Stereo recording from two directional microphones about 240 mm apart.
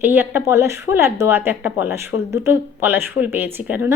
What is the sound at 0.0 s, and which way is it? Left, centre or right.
A woman's voice, centre.